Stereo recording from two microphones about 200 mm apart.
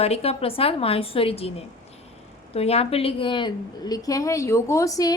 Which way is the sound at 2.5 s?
30° left (ahead or behind).